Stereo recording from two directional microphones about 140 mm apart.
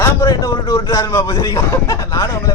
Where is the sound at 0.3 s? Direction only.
35° left (ahead or behind).